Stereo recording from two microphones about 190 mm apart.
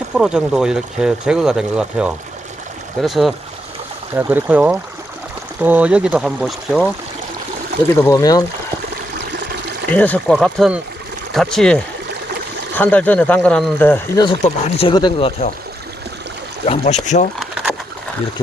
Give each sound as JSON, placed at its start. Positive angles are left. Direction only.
{"t": 0.1, "sound": "speech", "side_deg": -5}
{"t": 4.1, "sound": "speech", "side_deg": -10}
{"t": 7.9, "sound": "speech", "side_deg": 15}
{"t": 9.9, "sound": "speech", "side_deg": 5}
{"t": 14.4, "sound": "speech", "side_deg": 35}
{"t": 16.6, "sound": "speech", "side_deg": 35}
{"t": 17.7, "sound": "pigeon", "side_deg": 5}